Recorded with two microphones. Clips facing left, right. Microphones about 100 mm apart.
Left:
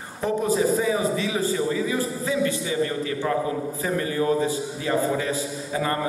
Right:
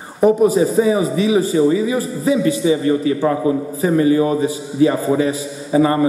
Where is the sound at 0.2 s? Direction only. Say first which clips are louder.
Right 10 dB; 15° right (ahead or behind).